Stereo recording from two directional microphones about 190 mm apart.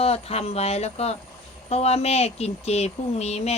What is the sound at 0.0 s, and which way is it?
A woman's voice, 30° left (ahead or behind).